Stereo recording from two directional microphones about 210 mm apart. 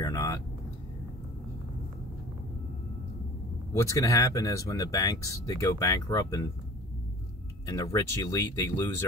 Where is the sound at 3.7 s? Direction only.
15° left (ahead or behind).